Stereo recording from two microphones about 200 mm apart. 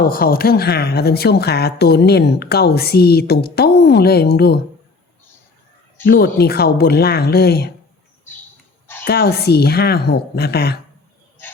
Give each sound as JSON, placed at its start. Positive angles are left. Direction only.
{"t": 0.0, "sound": "speech", "side_deg": 45}
{"t": 6.1, "sound": "speech", "side_deg": 50}
{"t": 9.0, "sound": "speech", "side_deg": 50}